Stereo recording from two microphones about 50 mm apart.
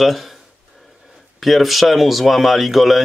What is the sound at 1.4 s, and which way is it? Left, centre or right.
Speech, centre.